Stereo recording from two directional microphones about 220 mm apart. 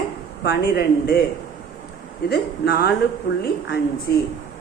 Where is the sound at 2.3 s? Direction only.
45° left (ahead or behind).